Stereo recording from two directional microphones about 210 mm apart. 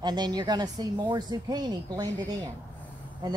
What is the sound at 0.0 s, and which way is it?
Speech, 20° right (ahead or behind).